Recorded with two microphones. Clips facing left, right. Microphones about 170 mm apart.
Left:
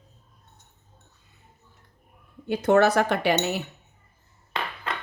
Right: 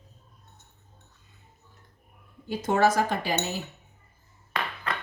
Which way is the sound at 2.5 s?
65° left (ahead or behind).